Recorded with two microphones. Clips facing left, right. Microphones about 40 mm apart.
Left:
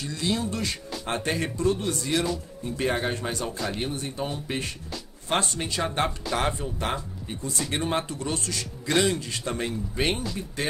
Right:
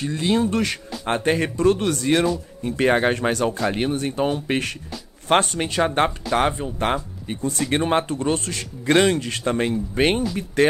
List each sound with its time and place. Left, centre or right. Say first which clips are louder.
0.0 s speech: right 7 dB; right
10.6 s speech: right 12 dB; right